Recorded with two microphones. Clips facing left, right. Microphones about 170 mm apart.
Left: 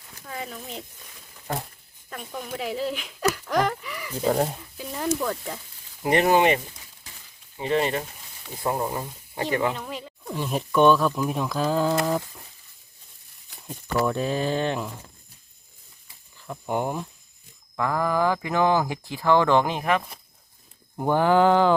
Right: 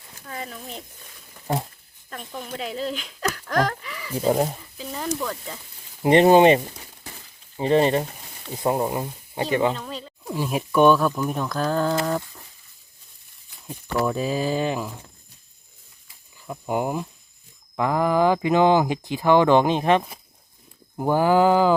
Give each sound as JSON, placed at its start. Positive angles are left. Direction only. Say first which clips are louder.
{"t": 0.3, "sound": "speech", "louder": "even", "side_deg": 0}
{"t": 2.0, "sound": "speech", "louder": "even", "side_deg": 5}
{"t": 4.1, "sound": "speech", "louder": "right 2 dB", "side_deg": -10}
{"t": 4.8, "sound": "speech", "louder": "left 2 dB", "side_deg": 5}
{"t": 6.0, "sound": "speech", "louder": "right 6 dB", "side_deg": -25}
{"t": 8.4, "sound": "speech", "louder": "right 4 dB", "side_deg": -20}
{"t": 9.7, "sound": "speech", "louder": "right 1 dB", "side_deg": 15}
{"t": 10.2, "sound": "speech", "louder": "right 2 dB", "side_deg": -10}
{"t": 11.3, "sound": "mantra", "louder": "even", "side_deg": 5}
{"t": 14.0, "sound": "mantra", "louder": "right 1 dB", "side_deg": -5}
{"t": 16.5, "sound": "speech", "louder": "right 2 dB", "side_deg": -5}
{"t": 17.7, "sound": "speech", "louder": "right 4 dB", "side_deg": -20}
{"t": 20.9, "sound": "speech", "louder": "right 1 dB", "side_deg": -5}